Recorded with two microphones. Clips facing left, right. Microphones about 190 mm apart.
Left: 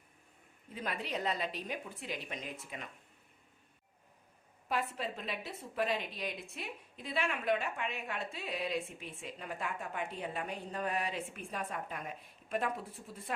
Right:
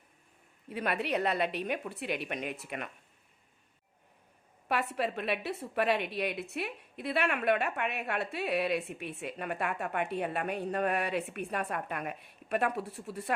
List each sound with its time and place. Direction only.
0.7 s a woman's voice: 70° right (ahead or behind)
4.7 s a woman's voice: 70° right (ahead or behind)